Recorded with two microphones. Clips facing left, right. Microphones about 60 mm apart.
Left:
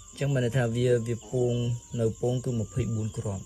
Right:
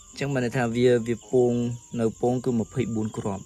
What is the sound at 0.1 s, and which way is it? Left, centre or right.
Speech, right.